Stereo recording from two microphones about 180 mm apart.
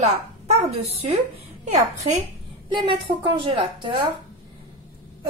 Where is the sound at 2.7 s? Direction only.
30° right (ahead or behind).